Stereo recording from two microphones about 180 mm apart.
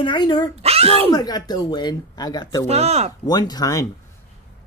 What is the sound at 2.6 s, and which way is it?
Speech, 35° right (ahead or behind).